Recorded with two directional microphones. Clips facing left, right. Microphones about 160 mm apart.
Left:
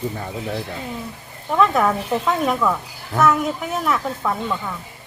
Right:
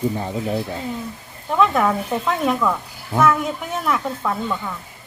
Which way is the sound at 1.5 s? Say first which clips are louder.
Even; centre (ahead or behind).